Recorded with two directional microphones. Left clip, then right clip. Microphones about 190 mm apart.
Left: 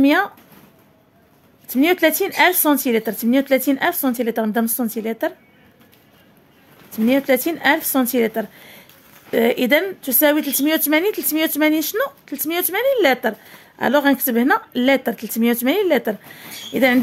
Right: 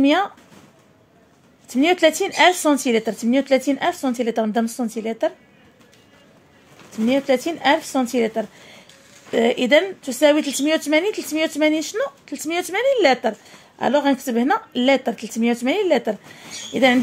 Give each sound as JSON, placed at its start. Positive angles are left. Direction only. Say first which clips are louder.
{"t": 0.0, "sound": "speech", "louder": "left 1 dB", "side_deg": 10}
{"t": 1.7, "sound": "speech", "louder": "even", "side_deg": 10}
{"t": 6.9, "sound": "speech", "louder": "left 2 dB", "side_deg": 15}